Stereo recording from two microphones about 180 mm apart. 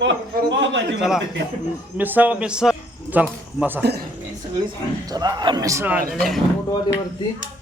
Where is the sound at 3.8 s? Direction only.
65° right (ahead or behind).